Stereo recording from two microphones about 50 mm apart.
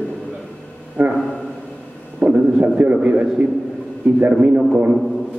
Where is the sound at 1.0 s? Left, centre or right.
Right.